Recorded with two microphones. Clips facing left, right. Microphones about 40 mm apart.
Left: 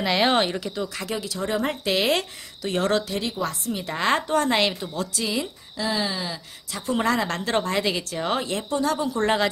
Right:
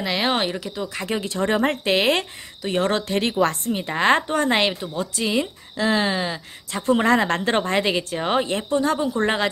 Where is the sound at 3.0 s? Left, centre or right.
Right.